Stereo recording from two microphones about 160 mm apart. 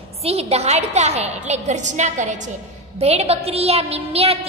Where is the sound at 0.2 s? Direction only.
40° right (ahead or behind).